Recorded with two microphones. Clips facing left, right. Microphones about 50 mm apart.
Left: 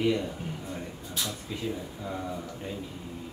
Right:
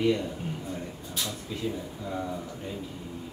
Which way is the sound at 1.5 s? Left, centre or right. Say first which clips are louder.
Right 2 dB; centre.